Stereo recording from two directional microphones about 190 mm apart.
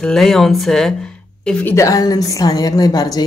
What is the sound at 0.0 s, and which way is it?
A woman's voice, centre (ahead or behind).